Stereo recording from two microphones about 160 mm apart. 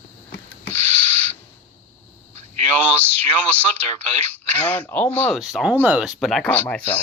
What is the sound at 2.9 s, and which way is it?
Speech, 10° left (ahead or behind).